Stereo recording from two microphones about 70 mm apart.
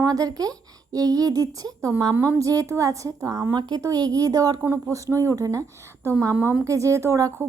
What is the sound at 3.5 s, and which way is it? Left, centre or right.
Speech, right.